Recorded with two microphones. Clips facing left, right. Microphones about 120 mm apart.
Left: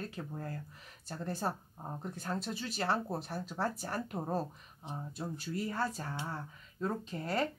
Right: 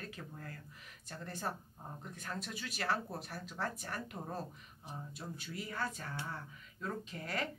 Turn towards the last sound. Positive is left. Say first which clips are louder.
# left 6 dB
turn(degrees=30)  # may be behind; listen again after turning